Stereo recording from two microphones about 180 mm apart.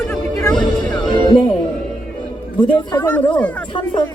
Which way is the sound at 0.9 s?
25° left (ahead or behind).